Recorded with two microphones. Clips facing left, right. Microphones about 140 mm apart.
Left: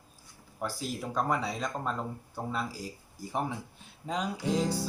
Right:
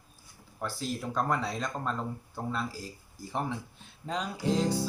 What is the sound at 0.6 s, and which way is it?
Music, 10° left (ahead or behind).